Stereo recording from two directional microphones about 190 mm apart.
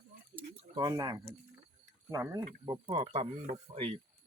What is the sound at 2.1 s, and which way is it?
Speech, 20° right (ahead or behind).